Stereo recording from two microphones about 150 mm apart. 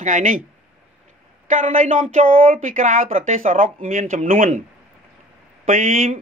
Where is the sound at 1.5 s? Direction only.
60° right (ahead or behind).